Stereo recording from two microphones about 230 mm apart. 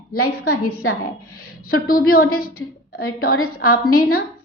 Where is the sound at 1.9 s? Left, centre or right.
Left.